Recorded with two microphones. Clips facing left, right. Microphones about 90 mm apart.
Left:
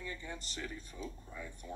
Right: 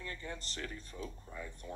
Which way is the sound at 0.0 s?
10° left (ahead or behind).